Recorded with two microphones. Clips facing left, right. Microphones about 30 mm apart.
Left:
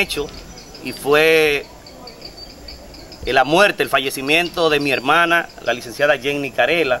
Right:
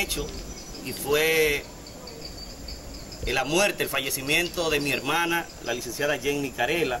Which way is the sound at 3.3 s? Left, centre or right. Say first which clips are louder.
Left 10 dB; left.